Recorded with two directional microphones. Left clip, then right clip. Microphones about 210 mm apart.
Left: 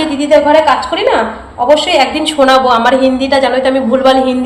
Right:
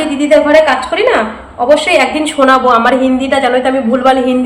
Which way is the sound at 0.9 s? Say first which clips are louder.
Right 1 dB; 10° right (ahead or behind).